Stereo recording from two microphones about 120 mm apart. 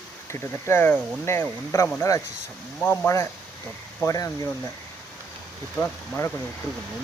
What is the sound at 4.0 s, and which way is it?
Speech, 30° left (ahead or behind).